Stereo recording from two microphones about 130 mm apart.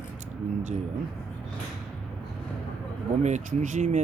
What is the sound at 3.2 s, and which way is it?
Speech, 65° right (ahead or behind).